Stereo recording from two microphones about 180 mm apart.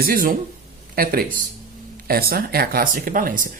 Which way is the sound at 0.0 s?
55° right (ahead or behind).